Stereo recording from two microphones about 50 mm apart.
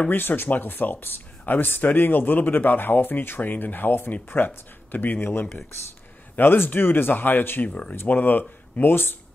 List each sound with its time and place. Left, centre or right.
0.1 s a man's voice: left
4.9 s a man's voice: left
5.2 s a man's voice: left
7.6 s a man's voice: left